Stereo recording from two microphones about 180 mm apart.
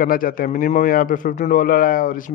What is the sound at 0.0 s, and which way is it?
A man's voice, 50° left (ahead or behind).